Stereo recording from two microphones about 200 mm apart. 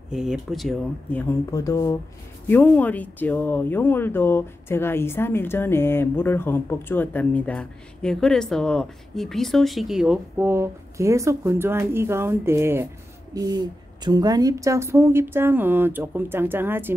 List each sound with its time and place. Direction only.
0.1 s speech: 5° right (ahead or behind)
1.5 s a woman's voice: 15° left (ahead or behind); by 16.9 s 10° right (ahead or behind)